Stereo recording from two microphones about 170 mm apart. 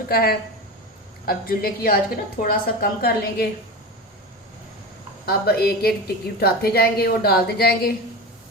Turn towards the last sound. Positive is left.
turn(degrees=65)  # may be behind; listen again after turning